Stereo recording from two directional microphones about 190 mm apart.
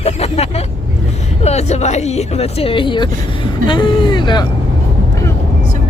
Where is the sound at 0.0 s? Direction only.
35° left (ahead or behind).